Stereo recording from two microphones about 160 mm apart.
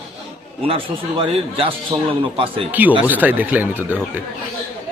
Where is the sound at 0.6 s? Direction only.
35° right (ahead or behind).